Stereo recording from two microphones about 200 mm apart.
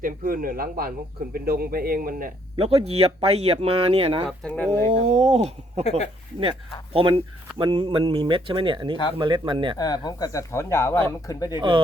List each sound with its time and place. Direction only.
0.0 s a man's voice: 45° right (ahead or behind)
2.6 s speech: 30° right (ahead or behind)
4.3 s speech: 5° left (ahead or behind)
4.9 s speech: 35° right (ahead or behind)
6.9 s speech: 25° right (ahead or behind)
9.7 s speech: 20° left (ahead or behind)